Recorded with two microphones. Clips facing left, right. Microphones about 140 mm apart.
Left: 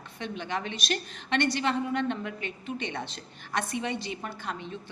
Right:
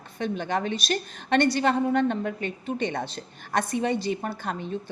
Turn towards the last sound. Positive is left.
turn(degrees=-40)  # may be behind; listen again after turning